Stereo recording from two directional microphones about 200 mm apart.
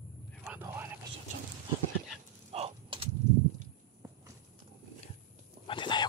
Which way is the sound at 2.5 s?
30° right (ahead or behind).